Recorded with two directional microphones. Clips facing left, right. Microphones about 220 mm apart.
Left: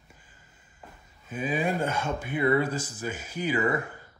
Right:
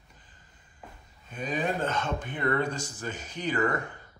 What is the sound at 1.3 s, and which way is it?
Speech, 5° left (ahead or behind).